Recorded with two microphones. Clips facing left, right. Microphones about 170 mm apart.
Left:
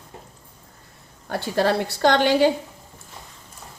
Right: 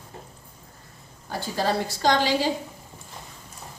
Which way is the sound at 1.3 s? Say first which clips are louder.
Left 4 dB; 65° left (ahead or behind).